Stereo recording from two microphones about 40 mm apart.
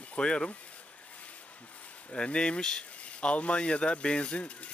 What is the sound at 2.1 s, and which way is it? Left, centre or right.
Speech, left.